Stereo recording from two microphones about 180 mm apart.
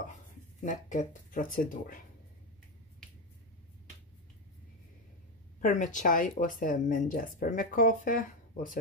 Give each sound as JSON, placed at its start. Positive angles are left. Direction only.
{"t": 0.7, "sound": "speech", "side_deg": 45}
{"t": 5.6, "sound": "speech", "side_deg": 45}